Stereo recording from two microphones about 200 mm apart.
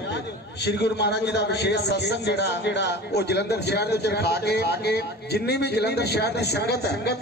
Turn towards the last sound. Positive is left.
turn(degrees=55)  # may be behind; listen again after turning